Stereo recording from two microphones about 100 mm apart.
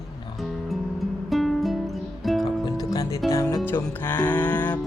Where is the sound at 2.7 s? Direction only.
35° left (ahead or behind).